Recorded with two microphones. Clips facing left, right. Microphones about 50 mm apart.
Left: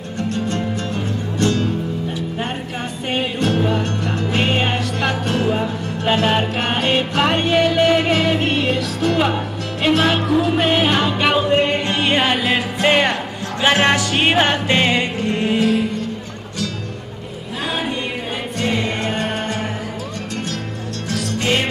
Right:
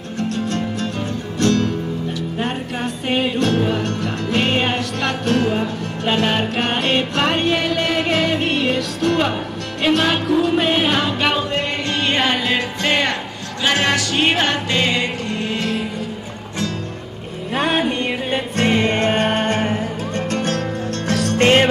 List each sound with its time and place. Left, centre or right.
0.2 s music: centre
3.1 s music: centre
11.4 s music: left
15.6 s music: centre
17.6 s a sound: right
18.3 s music: right
21.1 s music: right